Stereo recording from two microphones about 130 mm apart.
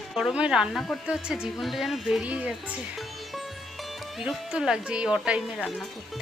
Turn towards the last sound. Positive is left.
turn(degrees=-10)  # may be behind; listen again after turning